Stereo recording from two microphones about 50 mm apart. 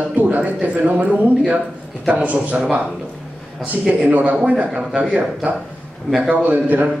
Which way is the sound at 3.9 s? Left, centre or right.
Right.